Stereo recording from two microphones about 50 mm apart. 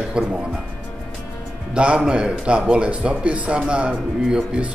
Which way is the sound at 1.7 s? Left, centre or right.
Right.